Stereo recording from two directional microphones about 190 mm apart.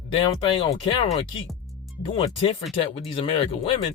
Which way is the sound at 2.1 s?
30° left (ahead or behind).